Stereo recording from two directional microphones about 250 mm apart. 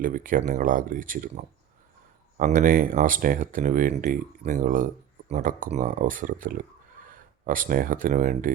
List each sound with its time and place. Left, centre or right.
0.0 s speech: right
2.4 s speech: right